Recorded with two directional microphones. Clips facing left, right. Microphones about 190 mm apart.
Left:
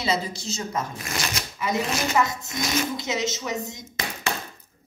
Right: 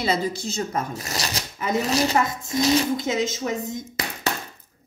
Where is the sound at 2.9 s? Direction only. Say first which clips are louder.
Right 3 dB; 50° right (ahead or behind).